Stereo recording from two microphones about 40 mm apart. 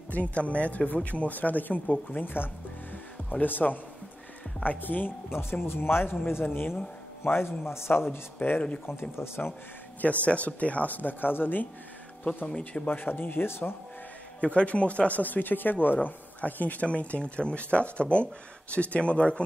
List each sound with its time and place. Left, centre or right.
0.1 s speech: left
3.3 s speech: left
5.3 s speech: left
7.2 s speech: left
9.2 s speech: left
10.2 s speech: left
12.4 s speech: left
12.9 s speech: left
13.5 s speech: left
14.4 s speech: left
16.8 s speech: left